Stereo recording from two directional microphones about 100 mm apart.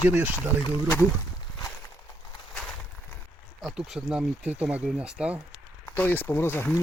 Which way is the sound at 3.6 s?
5° right (ahead or behind).